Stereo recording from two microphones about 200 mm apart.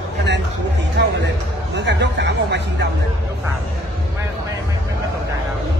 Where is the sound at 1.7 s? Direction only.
60° right (ahead or behind).